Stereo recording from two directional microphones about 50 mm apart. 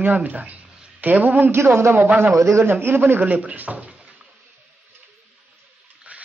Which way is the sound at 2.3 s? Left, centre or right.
Right.